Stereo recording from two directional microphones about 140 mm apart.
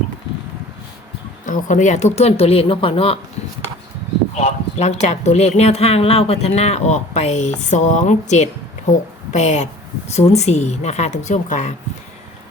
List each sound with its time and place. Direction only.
1.5 s speech: 65° left (ahead or behind); by 3.2 s 40° left (ahead or behind)
4.4 s a woman's voice: 50° left (ahead or behind)